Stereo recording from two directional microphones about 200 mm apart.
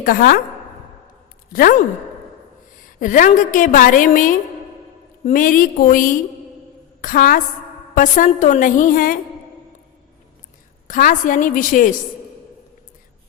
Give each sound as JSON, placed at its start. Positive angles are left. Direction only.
{"t": 0.0, "sound": "a woman's voice", "side_deg": 45}
{"t": 1.5, "sound": "a woman's voice", "side_deg": 45}
{"t": 3.0, "sound": "a woman's voice", "side_deg": 40}
{"t": 10.8, "sound": "a woman's voice", "side_deg": 40}